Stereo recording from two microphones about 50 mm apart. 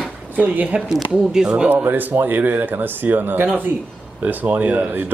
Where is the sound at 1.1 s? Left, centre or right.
Centre.